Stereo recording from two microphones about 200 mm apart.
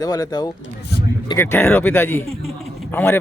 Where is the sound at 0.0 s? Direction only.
20° left (ahead or behind).